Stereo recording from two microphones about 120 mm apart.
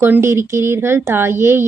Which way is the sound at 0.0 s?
20° right (ahead or behind).